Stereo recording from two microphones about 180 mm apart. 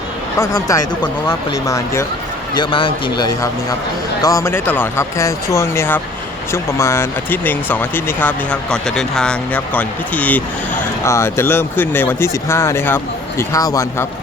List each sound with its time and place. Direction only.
0.3 s speech: 15° left (ahead or behind)
2.6 s speech: 30° left (ahead or behind)